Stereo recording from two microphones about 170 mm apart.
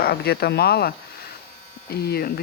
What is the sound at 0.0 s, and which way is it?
Speech, 65° left (ahead or behind).